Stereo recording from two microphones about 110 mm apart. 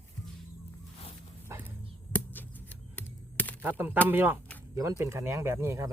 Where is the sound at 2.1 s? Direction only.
15° left (ahead or behind).